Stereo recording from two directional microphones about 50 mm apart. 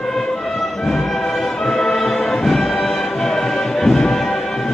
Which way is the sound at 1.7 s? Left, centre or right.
Centre.